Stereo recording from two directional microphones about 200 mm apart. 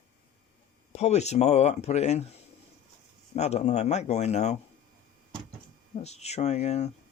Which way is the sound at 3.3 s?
35° left (ahead or behind).